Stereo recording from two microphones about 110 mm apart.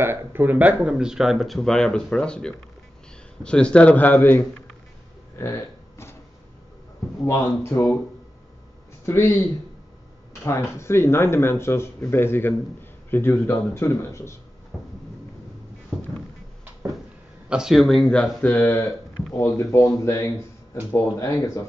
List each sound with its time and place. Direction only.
0.0 s a man's voice: 20° right (ahead or behind); by 4.5 s 20° left (ahead or behind)
5.3 s a sound: 20° left (ahead or behind)
7.2 s speech: 25° left (ahead or behind)
9.0 s speech: 25° left (ahead or behind)
10.4 s speech: 25° left (ahead or behind)
14.7 s a sound: 10° right (ahead or behind)
15.9 s vehicle: 10° left (ahead or behind)
17.5 s speech: 5° right (ahead or behind)
18.4 s a man's voice: 15° left (ahead or behind)
19.3 s speech: 25° left (ahead or behind)